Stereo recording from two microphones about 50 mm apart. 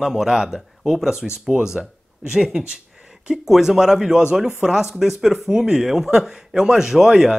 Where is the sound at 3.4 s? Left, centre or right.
Centre.